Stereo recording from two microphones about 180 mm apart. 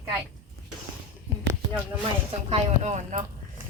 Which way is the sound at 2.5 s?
40° right (ahead or behind).